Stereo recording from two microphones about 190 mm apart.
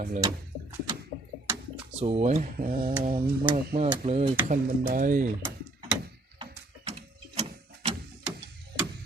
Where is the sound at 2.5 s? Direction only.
50° right (ahead or behind).